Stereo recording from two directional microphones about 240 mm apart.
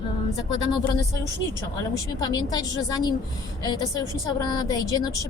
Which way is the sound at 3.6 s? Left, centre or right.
Centre.